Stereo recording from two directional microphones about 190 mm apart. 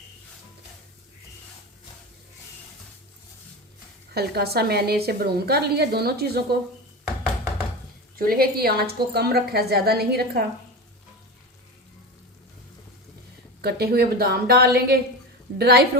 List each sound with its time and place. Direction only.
4.1 s a woman's voice: 55° right (ahead or behind)
8.1 s a woman's voice: 50° right (ahead or behind)
13.6 s a woman's voice: 55° right (ahead or behind)